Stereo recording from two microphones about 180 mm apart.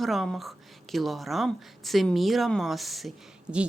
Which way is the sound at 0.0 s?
Centre (ahead or behind).